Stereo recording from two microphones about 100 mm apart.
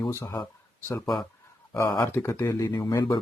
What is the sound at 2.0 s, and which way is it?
Speech, 25° left (ahead or behind).